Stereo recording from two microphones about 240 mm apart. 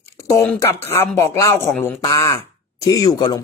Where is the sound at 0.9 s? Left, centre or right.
Centre.